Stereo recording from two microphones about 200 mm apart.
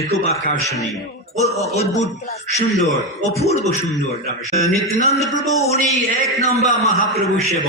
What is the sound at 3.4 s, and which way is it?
Speech, 35° left (ahead or behind).